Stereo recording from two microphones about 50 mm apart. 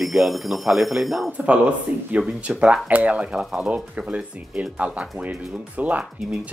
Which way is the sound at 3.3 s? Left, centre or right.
Centre.